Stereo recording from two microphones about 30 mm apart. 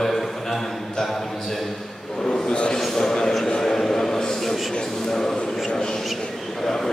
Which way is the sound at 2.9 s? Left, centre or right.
Centre.